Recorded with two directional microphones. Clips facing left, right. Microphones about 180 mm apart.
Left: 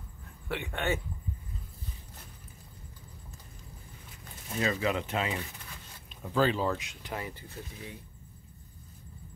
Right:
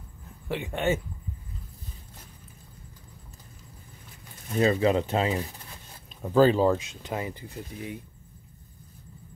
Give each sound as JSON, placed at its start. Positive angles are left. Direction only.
{"t": 0.5, "sound": "speech", "side_deg": -20}
{"t": 4.6, "sound": "speech", "side_deg": -30}